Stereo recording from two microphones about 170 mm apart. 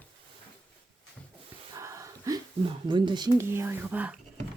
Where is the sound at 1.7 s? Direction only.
20° right (ahead or behind).